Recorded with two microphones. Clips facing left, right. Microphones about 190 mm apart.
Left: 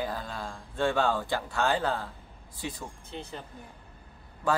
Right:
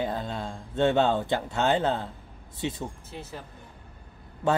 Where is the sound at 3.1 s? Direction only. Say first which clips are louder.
Even; 5° right (ahead or behind).